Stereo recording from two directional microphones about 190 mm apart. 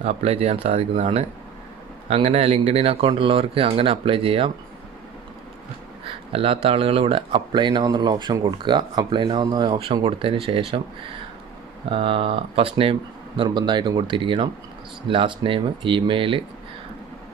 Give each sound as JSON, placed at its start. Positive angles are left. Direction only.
{"t": 0.0, "sound": "speech", "side_deg": -30}
{"t": 6.3, "sound": "speech", "side_deg": -30}
{"t": 11.9, "sound": "speech", "side_deg": -30}